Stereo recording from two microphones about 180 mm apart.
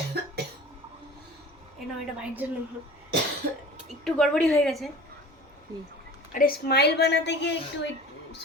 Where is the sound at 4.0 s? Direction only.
5° left (ahead or behind).